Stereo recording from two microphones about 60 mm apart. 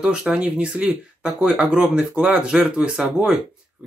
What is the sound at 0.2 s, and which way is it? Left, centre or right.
Speech, centre.